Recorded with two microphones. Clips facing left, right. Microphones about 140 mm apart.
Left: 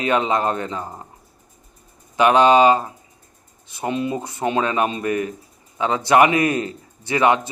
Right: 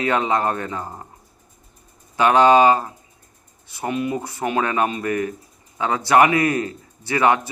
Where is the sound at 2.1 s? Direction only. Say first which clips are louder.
Even; 20° left (ahead or behind).